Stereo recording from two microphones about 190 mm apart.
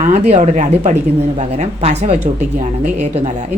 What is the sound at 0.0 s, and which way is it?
Speech, 35° right (ahead or behind).